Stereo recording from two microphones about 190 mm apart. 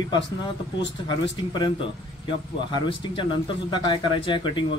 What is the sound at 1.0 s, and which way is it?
Speech, 25° left (ahead or behind).